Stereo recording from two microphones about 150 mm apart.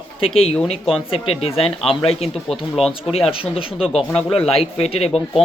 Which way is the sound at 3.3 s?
35° left (ahead or behind).